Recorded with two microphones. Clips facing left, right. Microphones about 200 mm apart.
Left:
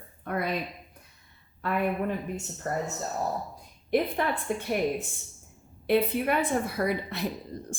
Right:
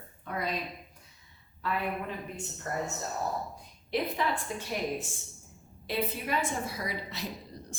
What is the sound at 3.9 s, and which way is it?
Speech, 55° left (ahead or behind).